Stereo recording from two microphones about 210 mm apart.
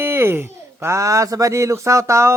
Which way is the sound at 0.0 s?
10° right (ahead or behind).